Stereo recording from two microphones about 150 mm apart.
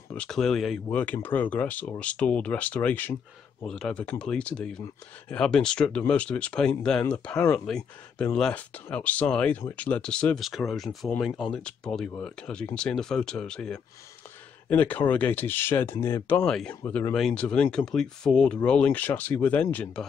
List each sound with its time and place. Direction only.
0.1 s speech: 5° left (ahead or behind)
16.8 s speech: 15° left (ahead or behind)
17.1 s speech: 5° left (ahead or behind)